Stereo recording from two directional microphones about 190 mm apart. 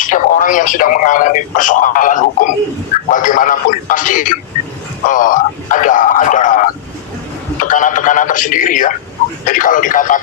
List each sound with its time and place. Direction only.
0.0 s a man's voice: 45° left (ahead or behind)
7.6 s radio: 45° left (ahead or behind)
9.5 s a man's voice: 45° left (ahead or behind)